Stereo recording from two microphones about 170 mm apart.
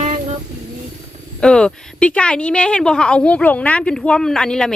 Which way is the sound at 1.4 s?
5° left (ahead or behind).